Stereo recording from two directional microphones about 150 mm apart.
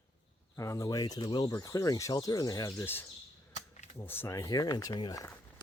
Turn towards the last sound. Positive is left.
turn(degrees=25)  # may be behind; listen again after turning